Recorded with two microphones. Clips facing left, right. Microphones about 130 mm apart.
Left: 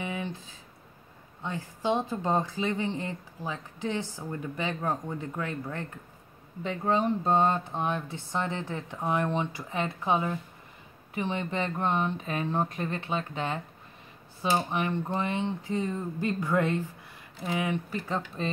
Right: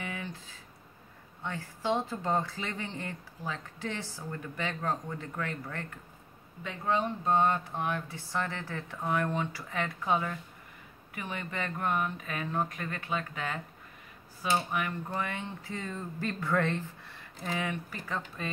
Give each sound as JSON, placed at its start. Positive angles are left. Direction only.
{"t": 0.0, "sound": "a sound", "side_deg": 20}
{"t": 1.4, "sound": "speech", "side_deg": 20}
{"t": 6.6, "sound": "speech", "side_deg": 30}